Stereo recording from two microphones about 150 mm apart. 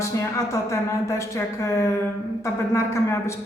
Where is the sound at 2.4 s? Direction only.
20° left (ahead or behind).